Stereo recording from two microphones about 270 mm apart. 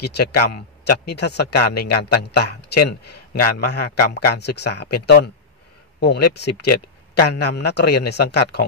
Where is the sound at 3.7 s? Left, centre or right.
Left.